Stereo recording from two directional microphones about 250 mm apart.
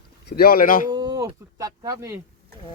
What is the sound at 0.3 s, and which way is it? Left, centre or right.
Speech, left.